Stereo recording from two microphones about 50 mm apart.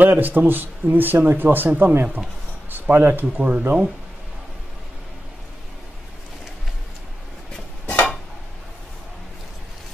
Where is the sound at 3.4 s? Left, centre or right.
Right.